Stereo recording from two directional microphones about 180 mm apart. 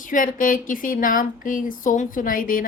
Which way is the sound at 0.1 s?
50° left (ahead or behind).